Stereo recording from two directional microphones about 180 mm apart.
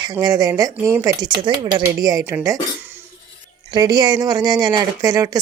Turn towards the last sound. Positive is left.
turn(degrees=-20)  # may be behind; listen again after turning